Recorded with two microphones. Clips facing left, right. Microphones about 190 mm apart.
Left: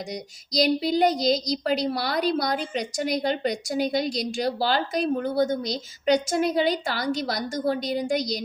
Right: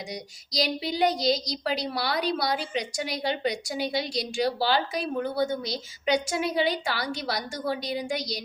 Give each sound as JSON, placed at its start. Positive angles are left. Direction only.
{"t": 0.1, "sound": "speech", "side_deg": 45}